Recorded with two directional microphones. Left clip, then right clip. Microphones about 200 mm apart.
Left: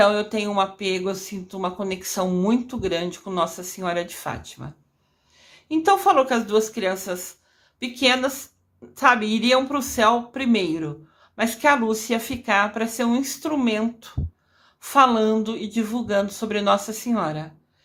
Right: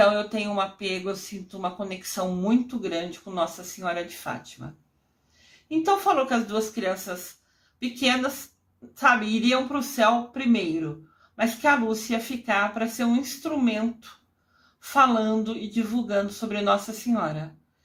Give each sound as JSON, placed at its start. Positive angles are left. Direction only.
{"t": 0.0, "sound": "a woman's voice", "side_deg": 30}